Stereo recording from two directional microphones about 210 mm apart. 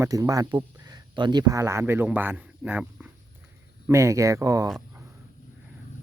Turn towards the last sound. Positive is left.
turn(degrees=-15)  # may be behind; listen again after turning